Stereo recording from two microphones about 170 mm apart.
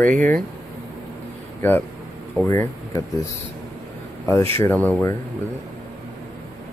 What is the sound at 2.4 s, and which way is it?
Speech, 15° left (ahead or behind).